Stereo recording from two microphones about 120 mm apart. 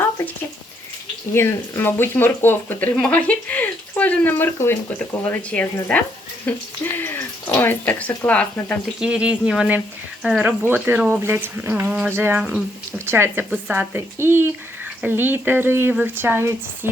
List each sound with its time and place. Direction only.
1.3 s speech: 20° left (ahead or behind)
9.0 s speech: 10° right (ahead or behind)
12.4 s speech: 5° right (ahead or behind)
13.1 s speech: 20° right (ahead or behind)